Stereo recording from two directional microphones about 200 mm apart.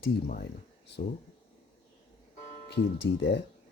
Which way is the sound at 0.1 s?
50° left (ahead or behind).